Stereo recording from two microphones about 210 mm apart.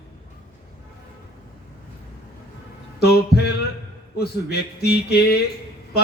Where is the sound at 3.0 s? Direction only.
50° left (ahead or behind).